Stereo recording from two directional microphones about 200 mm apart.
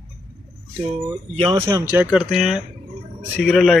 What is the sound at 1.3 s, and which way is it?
Speech, 25° right (ahead or behind).